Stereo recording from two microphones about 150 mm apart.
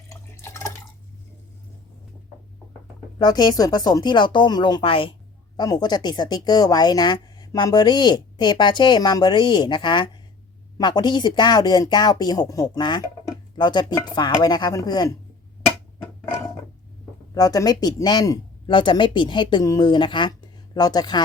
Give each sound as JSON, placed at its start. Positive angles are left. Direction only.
{"t": 0.1, "sound": "water", "side_deg": 20}
{"t": 3.2, "sound": "speech", "side_deg": 30}
{"t": 17.3, "sound": "speech", "side_deg": 25}